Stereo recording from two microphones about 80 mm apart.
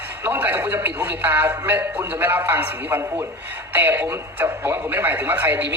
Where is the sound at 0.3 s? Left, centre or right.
Right.